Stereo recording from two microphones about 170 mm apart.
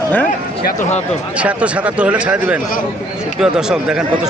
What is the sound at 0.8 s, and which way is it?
Speech, 45° left (ahead or behind).